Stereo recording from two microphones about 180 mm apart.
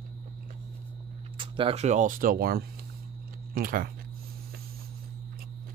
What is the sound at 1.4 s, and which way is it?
Speech, 30° right (ahead or behind).